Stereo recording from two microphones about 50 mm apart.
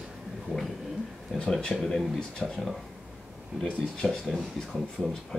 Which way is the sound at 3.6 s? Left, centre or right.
Centre.